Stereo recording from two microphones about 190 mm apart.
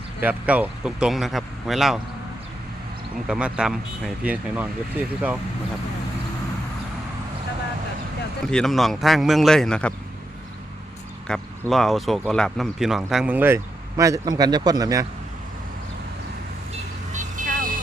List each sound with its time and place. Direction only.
0.2 s speech: 10° right (ahead or behind)
3.2 s speech: 5° right (ahead or behind)
8.4 s speech: 5° left (ahead or behind)
11.3 s speech: 5° left (ahead or behind); by 15.0 s 20° right (ahead or behind)
17.1 s vehicle: 40° right (ahead or behind)